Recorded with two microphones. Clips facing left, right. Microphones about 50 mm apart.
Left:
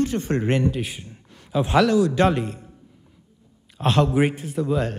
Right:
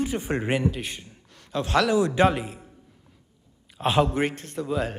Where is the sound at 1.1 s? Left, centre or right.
Centre.